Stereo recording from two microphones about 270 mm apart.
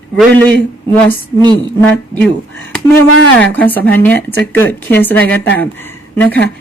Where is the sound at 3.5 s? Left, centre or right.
Centre.